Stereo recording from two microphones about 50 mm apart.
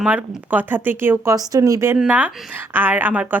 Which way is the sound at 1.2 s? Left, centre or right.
Right.